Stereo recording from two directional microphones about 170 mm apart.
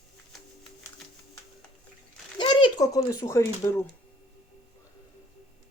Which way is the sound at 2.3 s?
25° left (ahead or behind).